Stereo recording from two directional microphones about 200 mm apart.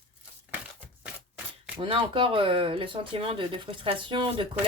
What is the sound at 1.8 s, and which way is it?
Speech, 25° right (ahead or behind).